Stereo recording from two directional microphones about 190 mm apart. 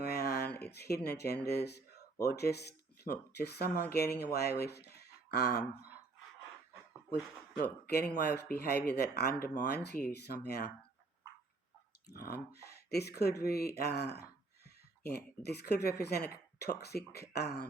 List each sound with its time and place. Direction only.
0.0 s a sound: 55° left (ahead or behind)
1.0 s speech: 55° left (ahead or behind)
7.9 s speech: 60° left (ahead or behind)
12.1 s speech: 55° left (ahead or behind)